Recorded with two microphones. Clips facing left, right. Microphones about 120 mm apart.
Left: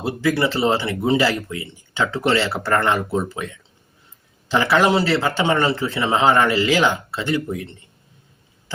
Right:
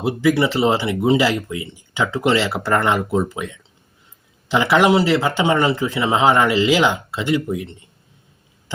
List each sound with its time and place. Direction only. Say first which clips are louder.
0.0 s speech: right 3 dB; 20° right (ahead or behind)